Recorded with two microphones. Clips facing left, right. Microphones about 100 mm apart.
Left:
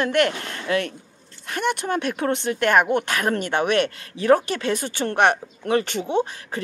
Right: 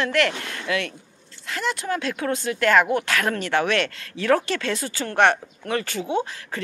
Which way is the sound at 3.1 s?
20° left (ahead or behind).